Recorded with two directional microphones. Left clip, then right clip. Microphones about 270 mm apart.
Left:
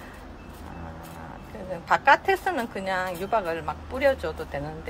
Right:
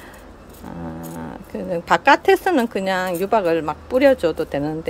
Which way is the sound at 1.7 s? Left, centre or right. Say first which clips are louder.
Right 5 dB; right.